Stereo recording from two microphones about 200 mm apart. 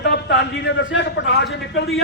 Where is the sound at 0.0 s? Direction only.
60° left (ahead or behind).